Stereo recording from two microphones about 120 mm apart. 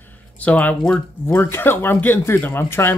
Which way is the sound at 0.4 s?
10° left (ahead or behind).